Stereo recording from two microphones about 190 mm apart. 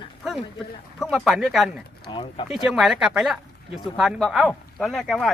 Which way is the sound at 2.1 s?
25° left (ahead or behind).